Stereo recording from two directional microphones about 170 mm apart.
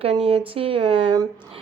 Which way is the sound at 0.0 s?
35° right (ahead or behind).